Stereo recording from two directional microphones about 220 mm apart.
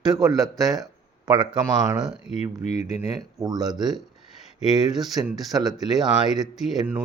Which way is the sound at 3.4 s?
15° right (ahead or behind).